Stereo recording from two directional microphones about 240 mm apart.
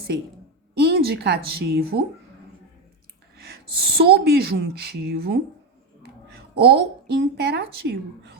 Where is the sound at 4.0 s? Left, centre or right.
Right.